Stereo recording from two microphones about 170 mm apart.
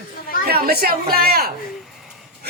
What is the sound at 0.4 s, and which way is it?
A man's voice, 65° right (ahead or behind).